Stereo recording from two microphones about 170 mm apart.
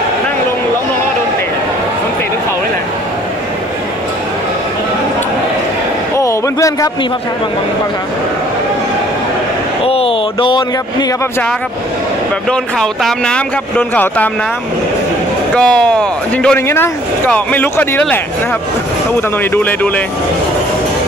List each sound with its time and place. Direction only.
6.1 s a sound: 20° left (ahead or behind)
9.8 s speech: 35° left (ahead or behind)
12.4 s speech: 5° left (ahead or behind)
15.5 s speech: 5° left (ahead or behind)
19.5 s speech: 10° left (ahead or behind)